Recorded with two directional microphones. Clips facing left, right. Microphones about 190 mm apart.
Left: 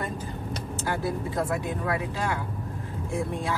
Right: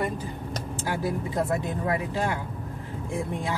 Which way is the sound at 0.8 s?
15° right (ahead or behind).